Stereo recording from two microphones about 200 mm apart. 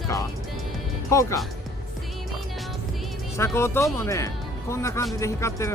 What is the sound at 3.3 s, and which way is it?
Speech, 15° left (ahead or behind).